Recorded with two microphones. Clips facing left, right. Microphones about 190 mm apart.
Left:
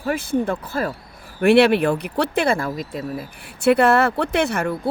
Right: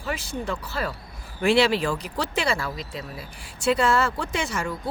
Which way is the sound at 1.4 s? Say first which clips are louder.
Left 6 dB; 60° left (ahead or behind).